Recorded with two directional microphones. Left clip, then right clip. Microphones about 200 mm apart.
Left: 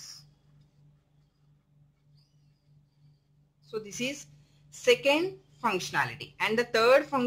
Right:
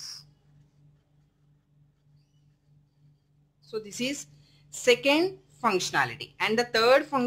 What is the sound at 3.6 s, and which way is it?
A woman's voice, 5° right (ahead or behind).